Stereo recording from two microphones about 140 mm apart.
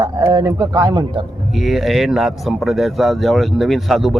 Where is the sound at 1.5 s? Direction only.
Centre (ahead or behind).